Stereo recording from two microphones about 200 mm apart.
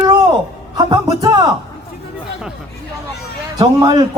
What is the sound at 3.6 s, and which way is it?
Speech, 20° right (ahead or behind).